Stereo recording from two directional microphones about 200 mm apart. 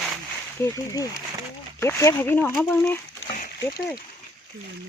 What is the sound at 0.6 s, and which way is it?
Speech, 15° left (ahead or behind).